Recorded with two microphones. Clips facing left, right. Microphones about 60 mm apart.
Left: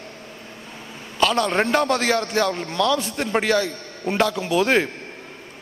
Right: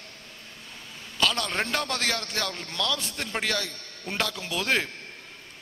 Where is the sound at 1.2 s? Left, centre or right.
Centre.